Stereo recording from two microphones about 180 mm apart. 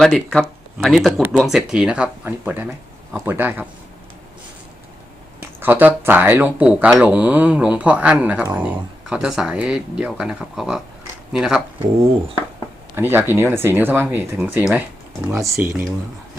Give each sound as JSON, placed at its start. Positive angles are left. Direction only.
{"t": 0.0, "sound": "speech", "side_deg": 0}
{"t": 5.4, "sound": "speech", "side_deg": -10}
{"t": 13.0, "sound": "speech", "side_deg": -10}